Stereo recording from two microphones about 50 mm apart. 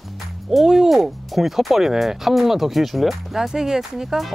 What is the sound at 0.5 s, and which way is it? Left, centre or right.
Speech, centre.